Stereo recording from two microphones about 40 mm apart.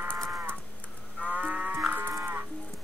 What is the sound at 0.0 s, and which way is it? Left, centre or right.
Livestock, right.